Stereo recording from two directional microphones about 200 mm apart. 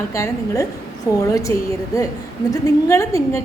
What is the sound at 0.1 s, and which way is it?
A woman's voice, 15° left (ahead or behind).